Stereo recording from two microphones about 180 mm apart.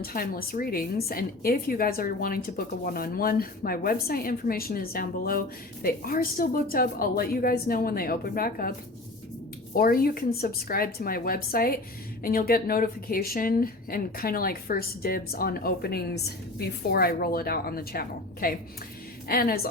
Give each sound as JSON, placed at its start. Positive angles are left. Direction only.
{"t": 0.0, "sound": "a woman's voice", "side_deg": 55}
{"t": 9.7, "sound": "a woman's voice", "side_deg": 55}